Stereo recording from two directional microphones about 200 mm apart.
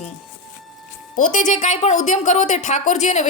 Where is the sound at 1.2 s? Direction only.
40° left (ahead or behind).